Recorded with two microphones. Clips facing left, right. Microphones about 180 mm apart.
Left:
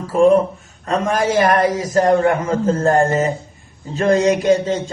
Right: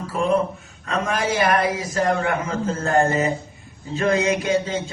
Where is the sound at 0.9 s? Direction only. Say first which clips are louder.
Left 5 dB; 40° left (ahead or behind).